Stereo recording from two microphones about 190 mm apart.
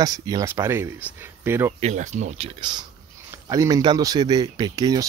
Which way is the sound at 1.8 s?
40° right (ahead or behind).